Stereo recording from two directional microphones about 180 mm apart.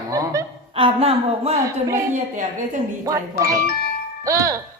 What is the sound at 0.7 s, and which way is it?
Speech, 30° right (ahead or behind).